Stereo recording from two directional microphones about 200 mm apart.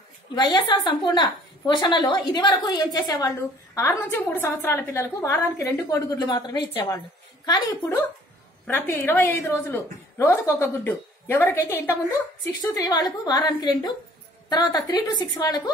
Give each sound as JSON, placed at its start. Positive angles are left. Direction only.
{"t": 0.3, "sound": "a woman's voice", "side_deg": 20}
{"t": 8.6, "sound": "a woman's voice", "side_deg": 10}